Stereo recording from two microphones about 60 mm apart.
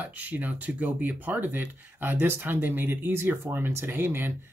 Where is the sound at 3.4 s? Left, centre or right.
Right.